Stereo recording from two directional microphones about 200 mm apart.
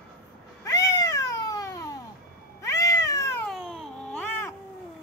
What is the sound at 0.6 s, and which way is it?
Cat, 15° left (ahead or behind).